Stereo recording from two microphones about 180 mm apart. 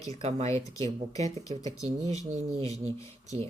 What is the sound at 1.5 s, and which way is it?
Speech, 35° right (ahead or behind).